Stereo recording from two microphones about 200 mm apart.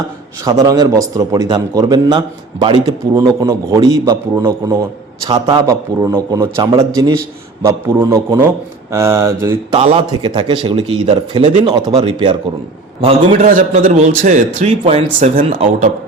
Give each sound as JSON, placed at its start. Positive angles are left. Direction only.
{"t": 0.4, "sound": "a man's voice", "side_deg": -15}
{"t": 9.7, "sound": "a man's voice", "side_deg": -30}
{"t": 13.3, "sound": "a man's voice", "side_deg": -40}